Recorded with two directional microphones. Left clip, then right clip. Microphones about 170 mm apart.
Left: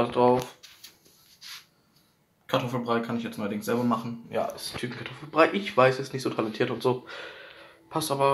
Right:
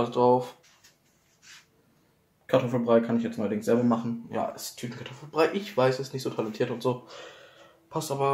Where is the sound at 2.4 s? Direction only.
25° right (ahead or behind).